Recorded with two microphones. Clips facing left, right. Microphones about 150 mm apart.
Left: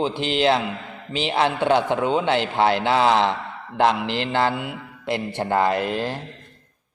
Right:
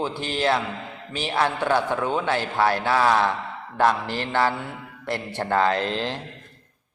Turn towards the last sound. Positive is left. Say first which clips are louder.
# left 2 dB
turn(degrees=10)  # may be behind; listen again after turning